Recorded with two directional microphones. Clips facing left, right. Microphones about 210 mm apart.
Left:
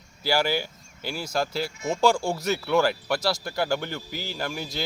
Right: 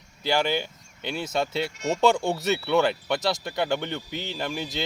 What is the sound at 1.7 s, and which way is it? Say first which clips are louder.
Speech: right 1 dB; 75° right (ahead or behind).